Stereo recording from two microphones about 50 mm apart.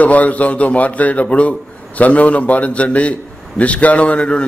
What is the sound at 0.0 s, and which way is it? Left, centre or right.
A man's voice, left.